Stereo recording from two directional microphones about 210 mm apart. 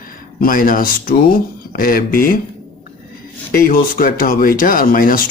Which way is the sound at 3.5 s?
45° left (ahead or behind).